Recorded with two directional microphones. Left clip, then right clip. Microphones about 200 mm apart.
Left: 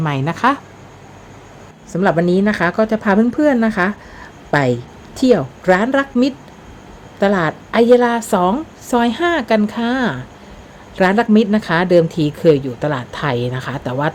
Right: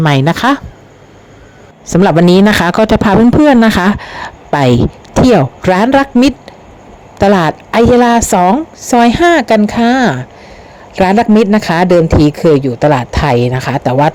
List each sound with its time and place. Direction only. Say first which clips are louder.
0.0 s speech: right 6 dB; 40° right (ahead or behind)
1.9 s speech: right 7 dB; 45° right (ahead or behind); by 14.1 s 30° right (ahead or behind)